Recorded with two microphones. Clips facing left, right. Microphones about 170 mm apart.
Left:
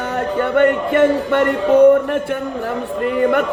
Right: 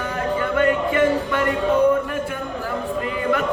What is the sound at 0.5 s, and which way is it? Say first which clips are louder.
Speech: left 5 dB; 65° left (ahead or behind).